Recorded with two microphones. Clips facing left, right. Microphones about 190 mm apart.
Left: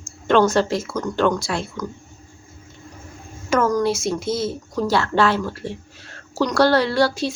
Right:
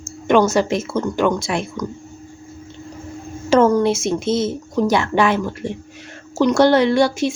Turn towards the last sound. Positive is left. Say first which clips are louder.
# right 4 dB
turn(degrees=-20)  # may be behind; listen again after turning